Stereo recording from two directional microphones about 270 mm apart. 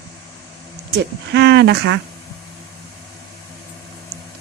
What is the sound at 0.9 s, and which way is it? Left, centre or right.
Speech, right.